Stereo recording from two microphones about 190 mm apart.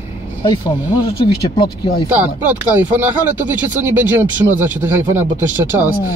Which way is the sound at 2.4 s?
10° right (ahead or behind).